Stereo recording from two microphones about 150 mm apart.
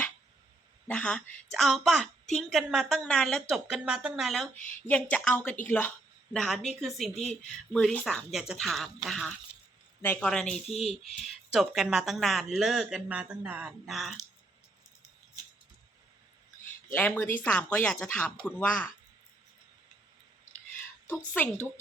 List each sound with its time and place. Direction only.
0.9 s speech: 10° left (ahead or behind)
10.0 s speech: 15° left (ahead or behind)
10.2 s speech: 5° left (ahead or behind)
16.9 s speech: 10° left (ahead or behind)
21.1 s speech: 10° left (ahead or behind)